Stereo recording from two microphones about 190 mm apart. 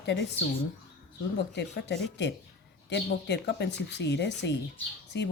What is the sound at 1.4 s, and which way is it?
Speech, 60° left (ahead or behind).